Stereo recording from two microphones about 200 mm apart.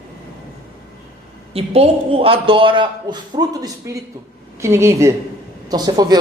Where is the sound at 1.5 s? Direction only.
30° right (ahead or behind).